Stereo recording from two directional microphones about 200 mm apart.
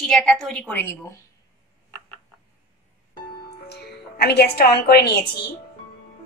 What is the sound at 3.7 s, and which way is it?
A woman's voice, 55° left (ahead or behind).